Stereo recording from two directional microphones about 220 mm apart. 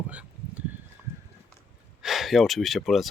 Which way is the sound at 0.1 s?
5° right (ahead or behind).